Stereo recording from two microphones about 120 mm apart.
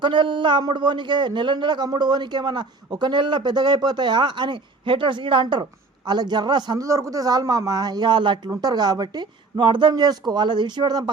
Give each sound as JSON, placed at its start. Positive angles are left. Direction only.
{"t": 0.0, "sound": "speech", "side_deg": -45}